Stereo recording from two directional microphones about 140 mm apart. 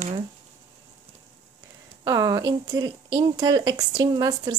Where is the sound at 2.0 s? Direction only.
25° right (ahead or behind).